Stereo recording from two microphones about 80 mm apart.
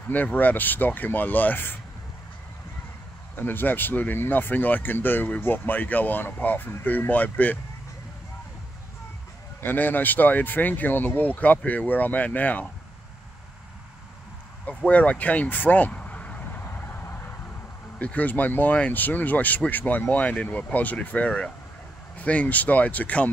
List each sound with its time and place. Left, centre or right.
0.1 s speech: left
3.3 s speech: left
9.6 s speech: left
14.7 s vehicle: centre
17.9 s speech: centre